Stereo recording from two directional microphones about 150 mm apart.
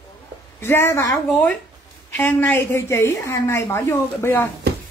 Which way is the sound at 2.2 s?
10° left (ahead or behind).